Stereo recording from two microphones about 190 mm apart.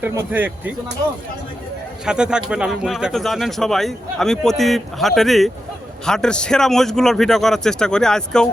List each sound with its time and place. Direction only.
0.0 s speech: 10° right (ahead or behind)
2.0 s speech: 5° right (ahead or behind)